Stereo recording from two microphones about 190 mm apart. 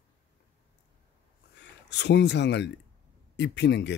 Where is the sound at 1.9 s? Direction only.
65° left (ahead or behind).